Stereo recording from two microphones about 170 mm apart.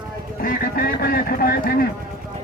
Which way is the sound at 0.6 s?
60° left (ahead or behind).